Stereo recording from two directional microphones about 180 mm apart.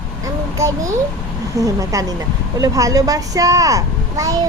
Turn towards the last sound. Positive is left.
turn(degrees=-20)  # may be behind; listen again after turning